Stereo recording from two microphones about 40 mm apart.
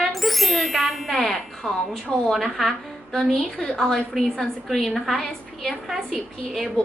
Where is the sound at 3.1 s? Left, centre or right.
Centre.